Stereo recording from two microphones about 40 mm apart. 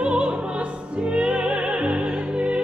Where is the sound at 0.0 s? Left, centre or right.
Right.